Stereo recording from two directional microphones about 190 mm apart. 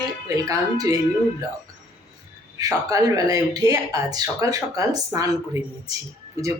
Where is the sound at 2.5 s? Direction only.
20° right (ahead or behind).